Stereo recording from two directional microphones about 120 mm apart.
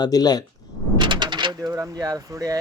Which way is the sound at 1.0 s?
40° right (ahead or behind).